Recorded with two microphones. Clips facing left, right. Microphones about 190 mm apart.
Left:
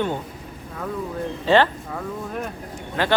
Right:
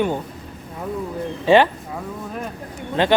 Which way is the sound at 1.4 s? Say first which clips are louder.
Right 3 dB; 15° right (ahead or behind).